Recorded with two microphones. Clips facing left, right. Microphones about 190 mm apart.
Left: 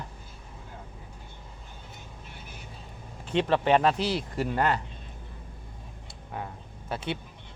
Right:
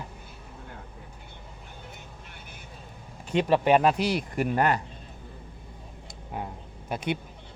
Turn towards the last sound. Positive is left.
turn(degrees=-15)  # may be behind; listen again after turning